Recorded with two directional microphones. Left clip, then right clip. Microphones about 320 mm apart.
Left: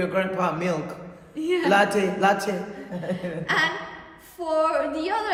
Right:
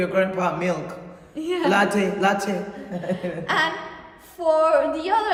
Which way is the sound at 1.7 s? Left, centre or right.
Centre.